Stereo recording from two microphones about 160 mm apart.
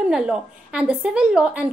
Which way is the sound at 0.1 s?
5° right (ahead or behind).